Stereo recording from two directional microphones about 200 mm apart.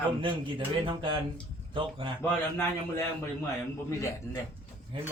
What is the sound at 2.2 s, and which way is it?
Speech, 15° left (ahead or behind).